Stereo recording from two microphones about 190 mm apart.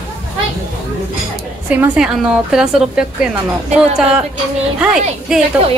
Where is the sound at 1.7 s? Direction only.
5° right (ahead or behind).